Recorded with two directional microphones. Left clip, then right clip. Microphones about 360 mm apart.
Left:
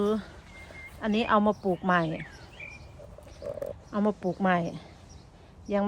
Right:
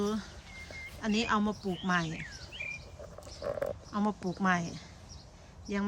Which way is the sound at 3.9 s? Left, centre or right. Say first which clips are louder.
Left 7 dB; centre.